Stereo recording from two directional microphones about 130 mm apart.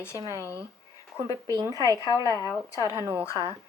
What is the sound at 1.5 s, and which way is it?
Speech, 25° right (ahead or behind).